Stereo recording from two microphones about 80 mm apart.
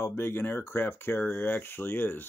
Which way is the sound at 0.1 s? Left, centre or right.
Left.